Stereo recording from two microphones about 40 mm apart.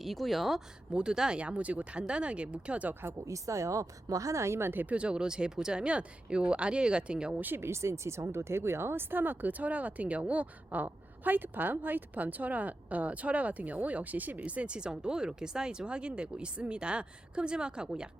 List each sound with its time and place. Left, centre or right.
0.0 s speech: centre
0.9 s speech: right
1.4 s speech: right
4.5 s speech: right
4.9 s speech: right
7.5 s speech: right
10.8 s a woman's voice: right